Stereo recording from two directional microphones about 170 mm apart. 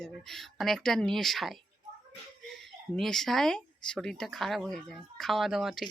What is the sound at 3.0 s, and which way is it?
Speech, centre (ahead or behind).